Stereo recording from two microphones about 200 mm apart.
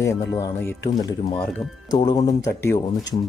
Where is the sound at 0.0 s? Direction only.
15° left (ahead or behind).